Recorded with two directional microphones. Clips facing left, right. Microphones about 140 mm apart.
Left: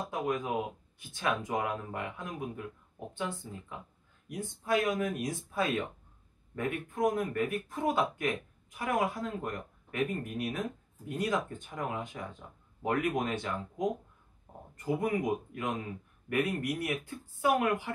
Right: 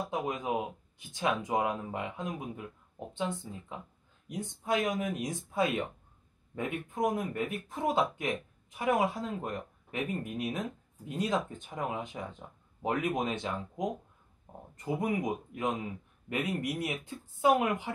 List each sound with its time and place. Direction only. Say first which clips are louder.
0.1 s speech: left 2 dB; 20° right (ahead or behind)
14.9 s speech: left 1 dB; 20° right (ahead or behind)